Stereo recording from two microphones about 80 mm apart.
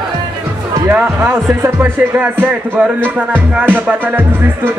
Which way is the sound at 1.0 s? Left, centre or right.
Right.